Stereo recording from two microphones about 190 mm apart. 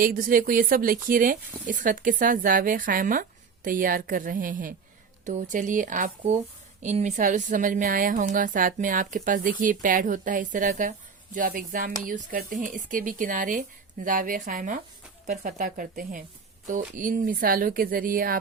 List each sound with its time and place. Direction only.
0.0 s speech: 45° right (ahead or behind)